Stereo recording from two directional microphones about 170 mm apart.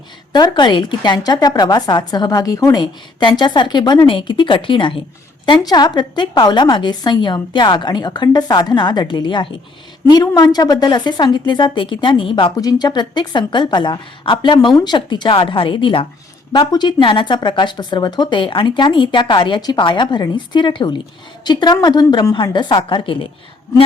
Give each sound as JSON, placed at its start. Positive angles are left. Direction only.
{"t": 0.3, "sound": "a woman's voice", "side_deg": 25}